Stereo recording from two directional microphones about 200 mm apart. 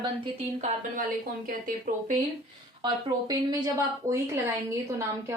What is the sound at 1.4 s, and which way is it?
Speech, 45° right (ahead or behind).